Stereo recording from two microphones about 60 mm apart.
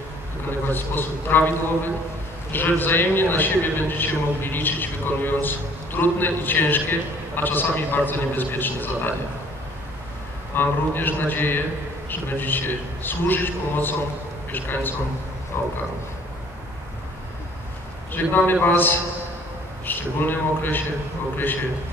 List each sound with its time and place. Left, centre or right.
0.5 s a man's voice: left
2.5 s a man's voice: left
10.5 s a man's voice: left
18.1 s a man's voice: left